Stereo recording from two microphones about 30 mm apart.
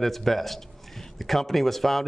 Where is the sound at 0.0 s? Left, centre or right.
Centre.